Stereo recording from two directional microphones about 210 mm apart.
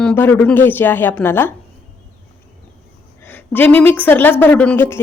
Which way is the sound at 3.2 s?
10° left (ahead or behind).